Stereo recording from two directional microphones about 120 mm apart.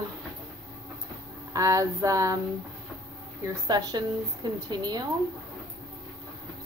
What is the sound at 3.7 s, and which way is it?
A woman's voice, 35° right (ahead or behind).